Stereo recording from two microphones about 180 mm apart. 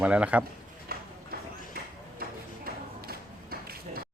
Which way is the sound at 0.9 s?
60° right (ahead or behind).